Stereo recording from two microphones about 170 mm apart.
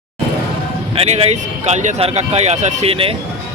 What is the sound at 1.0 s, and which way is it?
Speech, 35° right (ahead or behind).